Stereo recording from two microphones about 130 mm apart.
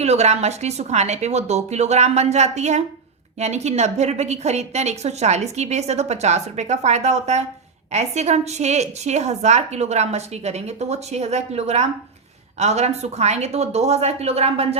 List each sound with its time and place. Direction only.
0.0 s a woman's voice: 55° right (ahead or behind)